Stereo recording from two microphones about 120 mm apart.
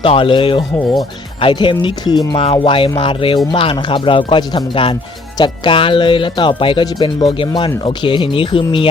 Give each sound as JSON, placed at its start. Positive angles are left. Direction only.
{"t": 0.0, "sound": "speech", "side_deg": 45}
{"t": 2.4, "sound": "speech", "side_deg": 50}